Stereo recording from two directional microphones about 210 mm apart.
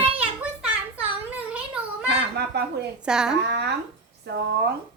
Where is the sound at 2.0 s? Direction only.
50° right (ahead or behind).